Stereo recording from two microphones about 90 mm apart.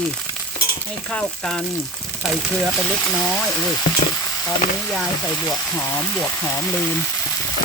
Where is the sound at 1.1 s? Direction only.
10° left (ahead or behind).